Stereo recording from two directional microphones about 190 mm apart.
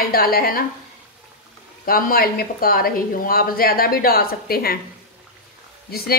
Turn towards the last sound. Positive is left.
turn(degrees=55)  # may be behind; listen again after turning